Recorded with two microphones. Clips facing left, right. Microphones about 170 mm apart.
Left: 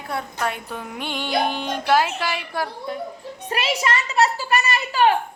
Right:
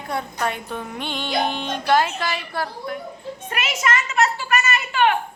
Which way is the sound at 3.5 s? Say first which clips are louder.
Left 1 dB; 35° left (ahead or behind).